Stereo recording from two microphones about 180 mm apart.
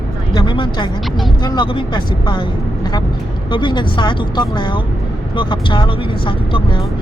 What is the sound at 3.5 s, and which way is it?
Speech, 25° left (ahead or behind).